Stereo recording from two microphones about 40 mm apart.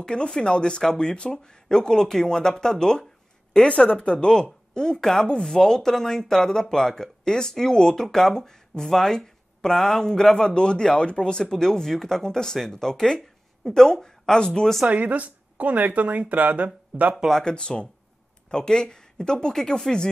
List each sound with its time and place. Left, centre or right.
0.0 s speech: left
14.9 s speech: right
17.5 s speech: left